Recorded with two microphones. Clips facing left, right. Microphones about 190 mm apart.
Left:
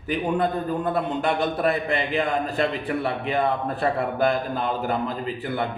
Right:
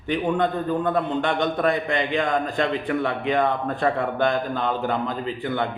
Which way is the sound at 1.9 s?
35° left (ahead or behind).